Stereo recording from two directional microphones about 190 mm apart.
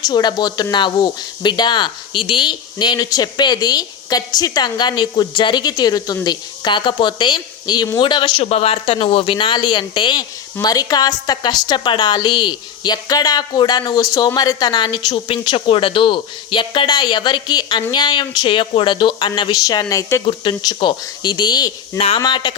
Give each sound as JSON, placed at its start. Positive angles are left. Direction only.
{"t": 0.1, "sound": "a woman's voice", "side_deg": 20}